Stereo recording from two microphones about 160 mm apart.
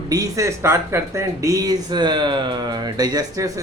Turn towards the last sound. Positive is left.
turn(degrees=-20)  # may be behind; listen again after turning